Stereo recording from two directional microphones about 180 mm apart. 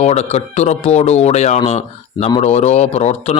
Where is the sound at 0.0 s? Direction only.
35° left (ahead or behind).